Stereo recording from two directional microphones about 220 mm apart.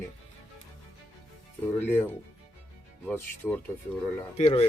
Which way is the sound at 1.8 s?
10° left (ahead or behind).